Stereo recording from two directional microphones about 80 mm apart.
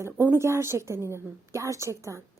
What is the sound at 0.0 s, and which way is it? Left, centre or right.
A woman's voice, right.